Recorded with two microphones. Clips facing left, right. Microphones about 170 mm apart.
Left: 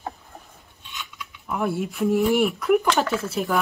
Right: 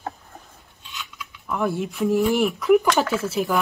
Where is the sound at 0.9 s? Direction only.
Centre (ahead or behind).